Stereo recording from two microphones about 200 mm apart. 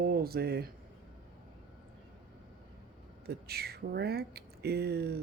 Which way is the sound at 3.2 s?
50° right (ahead or behind).